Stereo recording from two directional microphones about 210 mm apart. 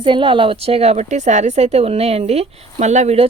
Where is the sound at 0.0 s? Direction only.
25° right (ahead or behind).